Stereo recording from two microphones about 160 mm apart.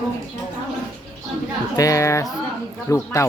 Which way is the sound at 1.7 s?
20° left (ahead or behind).